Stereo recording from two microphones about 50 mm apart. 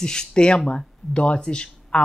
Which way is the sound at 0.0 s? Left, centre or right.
Centre.